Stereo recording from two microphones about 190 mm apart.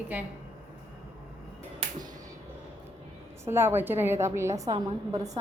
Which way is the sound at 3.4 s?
10° right (ahead or behind).